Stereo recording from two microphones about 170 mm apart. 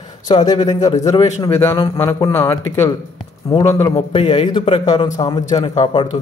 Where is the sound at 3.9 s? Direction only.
35° left (ahead or behind).